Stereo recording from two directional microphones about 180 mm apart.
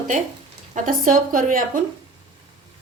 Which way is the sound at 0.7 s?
50° right (ahead or behind).